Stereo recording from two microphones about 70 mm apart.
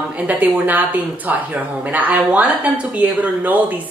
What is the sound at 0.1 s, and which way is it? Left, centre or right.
A woman's voice, right.